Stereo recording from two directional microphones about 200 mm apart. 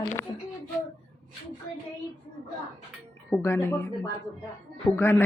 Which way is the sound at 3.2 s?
10° left (ahead or behind).